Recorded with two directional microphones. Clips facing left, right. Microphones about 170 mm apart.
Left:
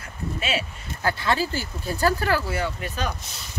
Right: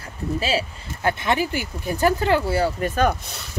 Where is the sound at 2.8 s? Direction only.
50° right (ahead or behind).